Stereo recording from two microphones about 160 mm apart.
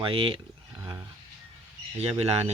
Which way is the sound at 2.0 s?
40° right (ahead or behind).